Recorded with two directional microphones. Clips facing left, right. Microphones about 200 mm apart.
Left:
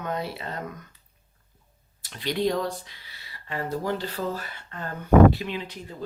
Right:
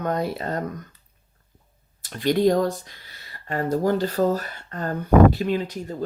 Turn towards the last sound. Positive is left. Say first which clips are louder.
# right 8 dB
turn(degrees=-45)  # may be behind; listen again after turning